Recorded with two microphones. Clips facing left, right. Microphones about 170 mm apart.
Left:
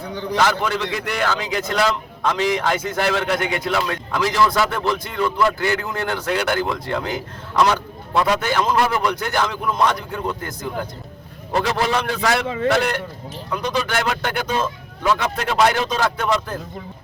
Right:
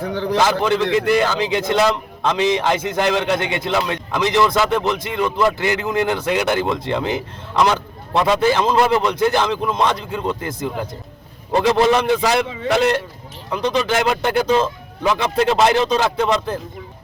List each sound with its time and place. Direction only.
0.0 s a man's voice: 90° right
0.3 s a man's voice: 25° right (ahead or behind)